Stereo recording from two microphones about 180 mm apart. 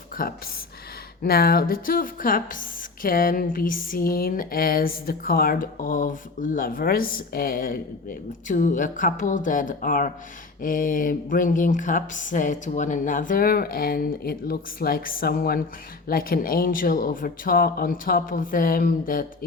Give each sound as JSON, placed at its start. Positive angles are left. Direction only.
{"t": 0.2, "sound": "speech", "side_deg": 50}